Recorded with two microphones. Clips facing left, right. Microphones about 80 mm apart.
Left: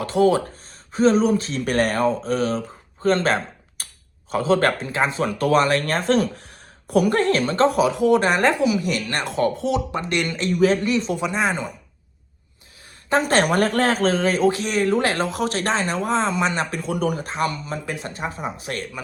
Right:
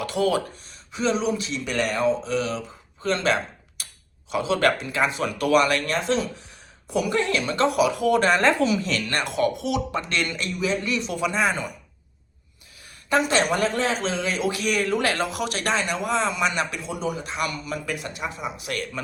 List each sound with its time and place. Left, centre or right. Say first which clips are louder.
0.0 s a woman's voice: left 5 dB; left
0.9 s speech: left 7 dB; left
5.8 s a woman's voice: left 4 dB; left
9.9 s a woman's voice: left 2 dB; left
13.2 s speech: left 3 dB; left
16.8 s speech: left 5 dB; left
17.3 s speech: left 3 dB; left